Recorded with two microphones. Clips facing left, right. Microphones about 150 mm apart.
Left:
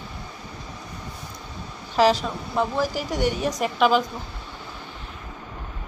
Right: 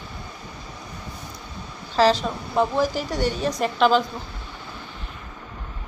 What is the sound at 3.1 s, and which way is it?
Speech, 15° left (ahead or behind).